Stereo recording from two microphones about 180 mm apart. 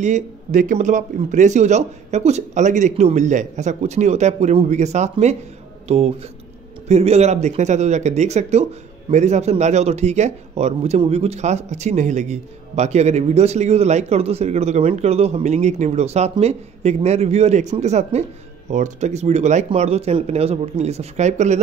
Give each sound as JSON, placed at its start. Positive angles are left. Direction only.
{"t": 0.0, "sound": "a man's voice", "side_deg": -40}